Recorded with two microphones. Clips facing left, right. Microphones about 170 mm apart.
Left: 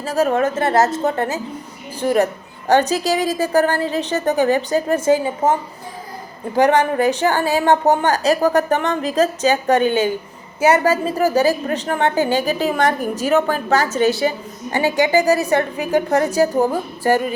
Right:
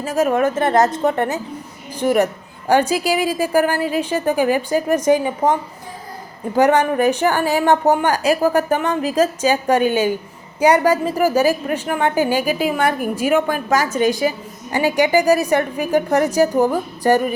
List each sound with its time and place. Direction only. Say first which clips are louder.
0.0 s a woman's voice: even; 35° left (ahead or behind)
0.4 s a woman's voice: right 1 dB; 20° right (ahead or behind)
6.7 s a woman's voice: even; 15° right (ahead or behind)
7.6 s a woman's voice: even; 15° left (ahead or behind)
8.0 s a woman's voice: even; 10° right (ahead or behind)